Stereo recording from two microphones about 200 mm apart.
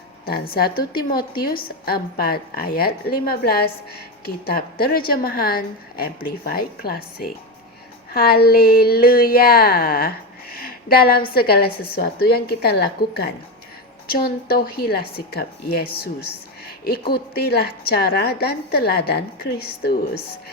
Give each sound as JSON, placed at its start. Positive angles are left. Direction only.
{"t": 0.5, "sound": "a woman's voice", "side_deg": 50}